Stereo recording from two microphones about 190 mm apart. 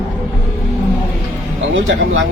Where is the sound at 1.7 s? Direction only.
90° right.